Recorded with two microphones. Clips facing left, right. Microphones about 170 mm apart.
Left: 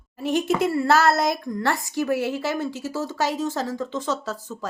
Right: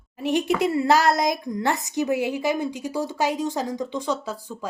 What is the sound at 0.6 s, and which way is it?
A woman's voice, 15° right (ahead or behind).